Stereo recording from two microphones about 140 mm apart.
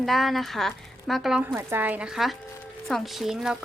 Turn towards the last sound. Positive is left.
turn(degrees=-5)  # may be behind; listen again after turning